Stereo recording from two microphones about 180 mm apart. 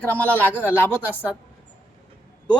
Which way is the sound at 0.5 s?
10° right (ahead or behind).